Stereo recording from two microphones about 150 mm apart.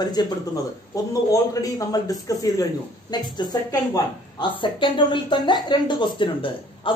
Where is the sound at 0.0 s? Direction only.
25° left (ahead or behind).